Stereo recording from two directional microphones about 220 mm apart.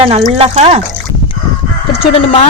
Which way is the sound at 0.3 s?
30° right (ahead or behind).